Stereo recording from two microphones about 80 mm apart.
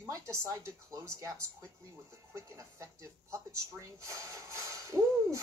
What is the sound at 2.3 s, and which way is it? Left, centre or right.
Speech, right.